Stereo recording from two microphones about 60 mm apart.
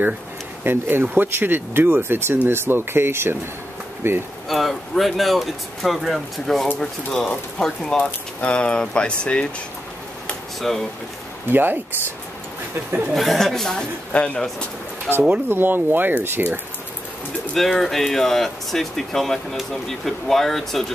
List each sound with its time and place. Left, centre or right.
0.7 s speech: right
4.5 s speech: centre
8.0 s speech: left
10.6 s speech: centre
11.5 s speech: right
13.1 s speech: centre
15.4 s speech: right
17.6 s speech: centre